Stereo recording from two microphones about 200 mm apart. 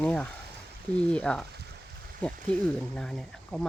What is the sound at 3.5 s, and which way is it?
Speech, centre (ahead or behind).